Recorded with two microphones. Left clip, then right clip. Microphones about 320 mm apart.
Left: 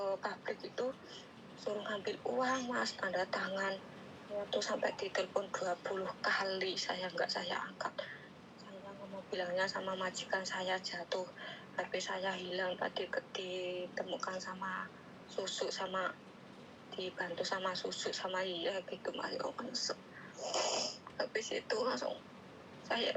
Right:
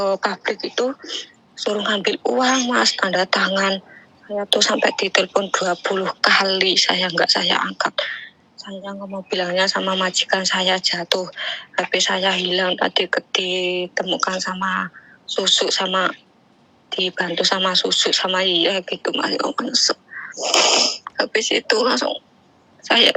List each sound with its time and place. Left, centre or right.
0.0 s speech: right
9.4 s speech: right